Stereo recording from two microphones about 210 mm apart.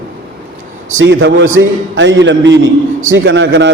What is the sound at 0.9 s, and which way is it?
A man's voice, 60° right (ahead or behind).